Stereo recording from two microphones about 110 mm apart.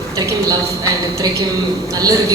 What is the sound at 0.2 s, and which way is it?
A woman's voice, 35° right (ahead or behind).